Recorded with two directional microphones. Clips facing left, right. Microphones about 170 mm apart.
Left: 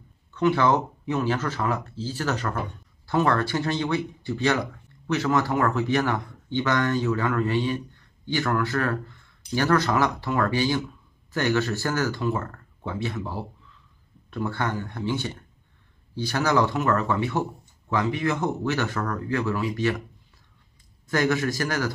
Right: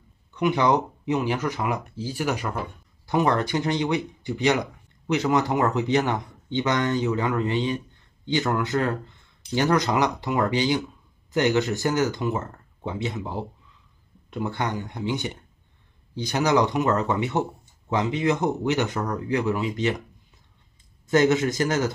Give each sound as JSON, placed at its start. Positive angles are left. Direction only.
{"t": 0.3, "sound": "speech", "side_deg": -15}
{"t": 21.1, "sound": "speech", "side_deg": -20}